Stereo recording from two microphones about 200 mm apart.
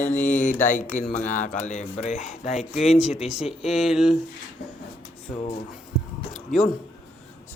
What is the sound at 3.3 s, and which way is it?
Speech, centre (ahead or behind).